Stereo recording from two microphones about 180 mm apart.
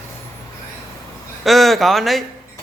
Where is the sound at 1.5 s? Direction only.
Centre (ahead or behind).